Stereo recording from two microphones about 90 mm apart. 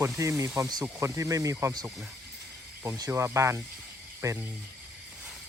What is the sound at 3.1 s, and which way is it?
Speech, 30° right (ahead or behind).